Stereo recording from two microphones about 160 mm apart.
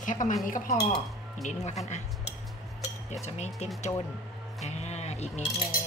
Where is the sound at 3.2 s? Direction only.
45° left (ahead or behind).